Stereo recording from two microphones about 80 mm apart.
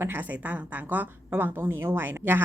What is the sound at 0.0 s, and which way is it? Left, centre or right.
A woman's voice, right.